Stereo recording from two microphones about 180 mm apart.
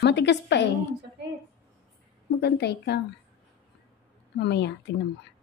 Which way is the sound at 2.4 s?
65° left (ahead or behind).